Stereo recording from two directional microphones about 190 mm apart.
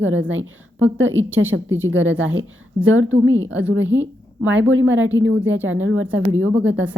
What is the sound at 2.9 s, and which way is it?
A woman's voice, 90° right.